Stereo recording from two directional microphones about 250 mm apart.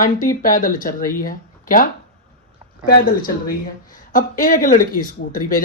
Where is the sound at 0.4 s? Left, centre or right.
Left.